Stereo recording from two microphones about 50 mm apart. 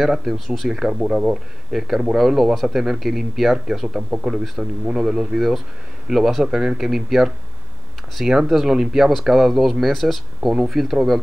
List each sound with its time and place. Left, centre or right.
0.0 s speech: centre